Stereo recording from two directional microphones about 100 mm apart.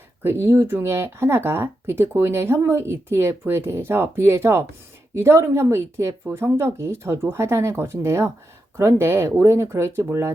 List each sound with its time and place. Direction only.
0.2 s speech: 25° right (ahead or behind)